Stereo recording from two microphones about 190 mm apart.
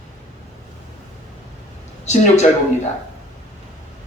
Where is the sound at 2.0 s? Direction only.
35° left (ahead or behind).